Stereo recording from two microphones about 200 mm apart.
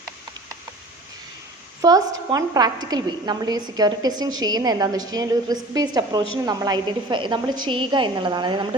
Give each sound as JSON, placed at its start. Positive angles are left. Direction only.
{"t": 1.8, "sound": "a woman's voice", "side_deg": -20}